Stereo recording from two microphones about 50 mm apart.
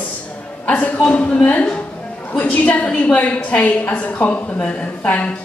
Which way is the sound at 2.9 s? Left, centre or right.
Left.